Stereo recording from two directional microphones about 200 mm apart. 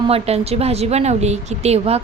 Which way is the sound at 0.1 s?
30° right (ahead or behind).